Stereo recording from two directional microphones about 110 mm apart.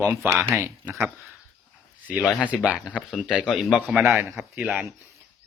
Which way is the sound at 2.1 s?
5° right (ahead or behind).